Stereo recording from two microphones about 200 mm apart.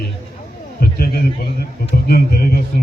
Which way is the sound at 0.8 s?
50° left (ahead or behind).